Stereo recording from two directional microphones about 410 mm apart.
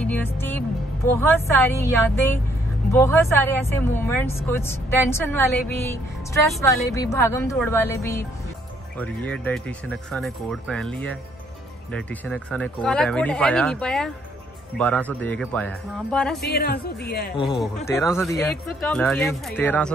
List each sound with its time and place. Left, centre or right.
0.0 s speech: centre
16.3 s speech: left
17.7 s speech: centre